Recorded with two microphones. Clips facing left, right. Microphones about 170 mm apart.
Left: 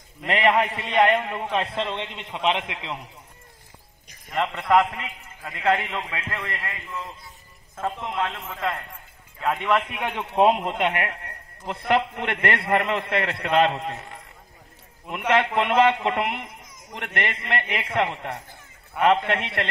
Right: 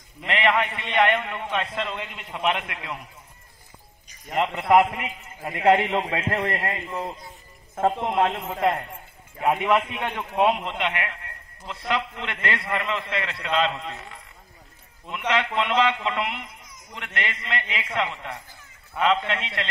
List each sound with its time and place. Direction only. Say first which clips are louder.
0.3 s a man's voice: left 2 dB; 40° left (ahead or behind)
4.6 s a man's voice: right 2 dB; 15° right (ahead or behind)
5.9 s a man's voice: right 7 dB; 40° right (ahead or behind)
8.0 s a man's voice: right 5 dB; 30° right (ahead or behind)
9.4 s a man's voice: right 3 dB; 15° right (ahead or behind)
9.8 s a man's voice: left 1 dB; 10° left (ahead or behind)
10.3 s a man's voice: left 3 dB; 30° left (ahead or behind)
10.7 s a man's voice: left 3 dB; 45° left (ahead or behind)